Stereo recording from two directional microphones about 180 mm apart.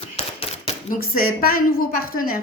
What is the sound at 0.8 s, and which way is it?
A woman's voice, 50° left (ahead or behind).